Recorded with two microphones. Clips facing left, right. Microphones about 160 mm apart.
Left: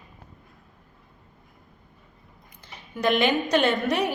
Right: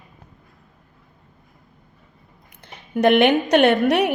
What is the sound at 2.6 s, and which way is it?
Speech, 60° right (ahead or behind).